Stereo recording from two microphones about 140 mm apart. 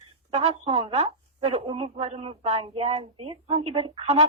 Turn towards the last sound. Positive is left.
turn(degrees=-45)  # may be behind; listen again after turning